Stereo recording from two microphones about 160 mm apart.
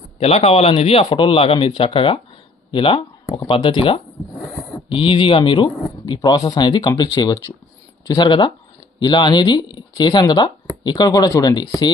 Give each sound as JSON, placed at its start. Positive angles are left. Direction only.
{"t": 0.2, "sound": "speech", "side_deg": 40}
{"t": 3.2, "sound": "speech", "side_deg": 20}
{"t": 3.5, "sound": "speech", "side_deg": 35}